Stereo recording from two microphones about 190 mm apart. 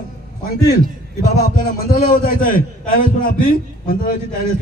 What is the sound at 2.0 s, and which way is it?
A man's voice, 45° left (ahead or behind).